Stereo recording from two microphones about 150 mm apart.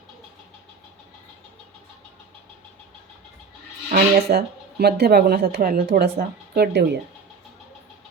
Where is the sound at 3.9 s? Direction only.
75° right (ahead or behind).